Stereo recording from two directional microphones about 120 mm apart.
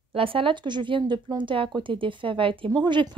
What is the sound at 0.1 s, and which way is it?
A woman's voice, 50° right (ahead or behind).